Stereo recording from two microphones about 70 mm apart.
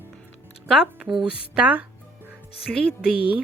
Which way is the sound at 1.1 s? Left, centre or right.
Centre.